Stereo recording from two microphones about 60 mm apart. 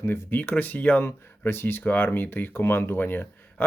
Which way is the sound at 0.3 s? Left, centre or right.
Left.